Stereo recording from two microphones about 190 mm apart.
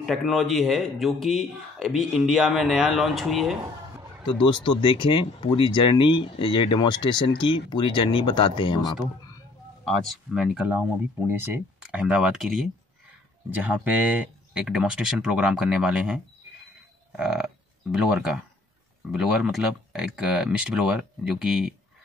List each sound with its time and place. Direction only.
0.0 s speech: centre (ahead or behind)
4.3 s speech: 25° left (ahead or behind)
9.8 s speech: centre (ahead or behind)
17.2 s speech: 5° right (ahead or behind)
19.1 s speech: centre (ahead or behind)